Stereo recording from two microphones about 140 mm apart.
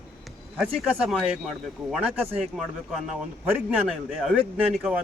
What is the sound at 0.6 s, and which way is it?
A man's voice, centre (ahead or behind).